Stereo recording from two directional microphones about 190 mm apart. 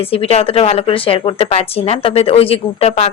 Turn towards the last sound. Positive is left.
turn(degrees=30)  # may be behind; listen again after turning